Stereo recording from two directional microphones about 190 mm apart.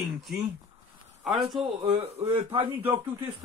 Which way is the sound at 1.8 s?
30° right (ahead or behind).